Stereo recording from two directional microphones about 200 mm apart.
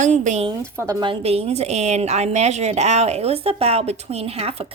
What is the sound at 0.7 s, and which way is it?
A woman's voice, 15° right (ahead or behind).